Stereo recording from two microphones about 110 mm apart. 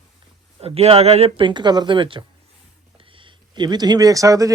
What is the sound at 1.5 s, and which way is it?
Speech, 40° right (ahead or behind).